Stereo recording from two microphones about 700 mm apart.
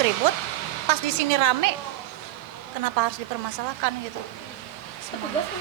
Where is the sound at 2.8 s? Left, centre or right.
Right.